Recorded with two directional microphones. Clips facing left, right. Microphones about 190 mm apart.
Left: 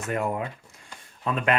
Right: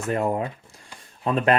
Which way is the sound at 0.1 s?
35° right (ahead or behind).